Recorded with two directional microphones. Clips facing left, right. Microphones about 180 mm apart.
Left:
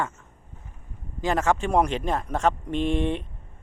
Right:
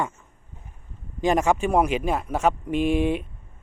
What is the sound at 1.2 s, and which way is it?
A man's voice, 15° right (ahead or behind).